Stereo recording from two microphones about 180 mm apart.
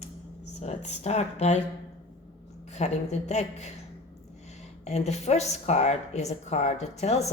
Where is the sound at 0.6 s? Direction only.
40° left (ahead or behind).